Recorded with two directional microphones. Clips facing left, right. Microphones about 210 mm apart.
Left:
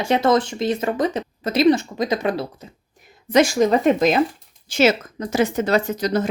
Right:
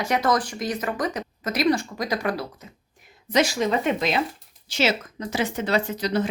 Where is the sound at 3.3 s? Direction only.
50° left (ahead or behind).